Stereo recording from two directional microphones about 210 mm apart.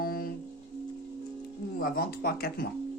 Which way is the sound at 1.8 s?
45° left (ahead or behind).